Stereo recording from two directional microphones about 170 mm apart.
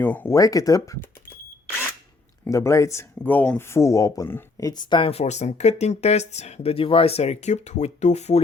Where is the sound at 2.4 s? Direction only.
15° left (ahead or behind).